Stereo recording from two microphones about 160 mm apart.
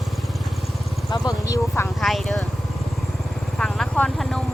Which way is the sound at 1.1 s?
25° left (ahead or behind).